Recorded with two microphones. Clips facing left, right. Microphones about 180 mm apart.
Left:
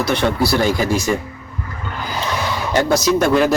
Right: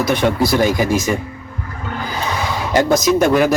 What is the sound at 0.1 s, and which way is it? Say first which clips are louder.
Speech: right 1 dB; 15° right (ahead or behind).